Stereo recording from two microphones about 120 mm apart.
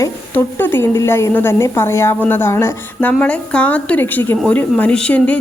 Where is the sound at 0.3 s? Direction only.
20° left (ahead or behind).